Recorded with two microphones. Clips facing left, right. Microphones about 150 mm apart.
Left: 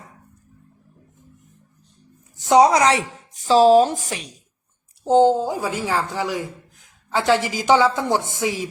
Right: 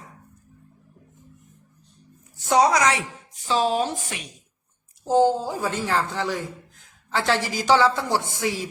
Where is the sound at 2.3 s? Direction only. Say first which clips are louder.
Left 5 dB; 20° left (ahead or behind); by 4.3 s 35° left (ahead or behind).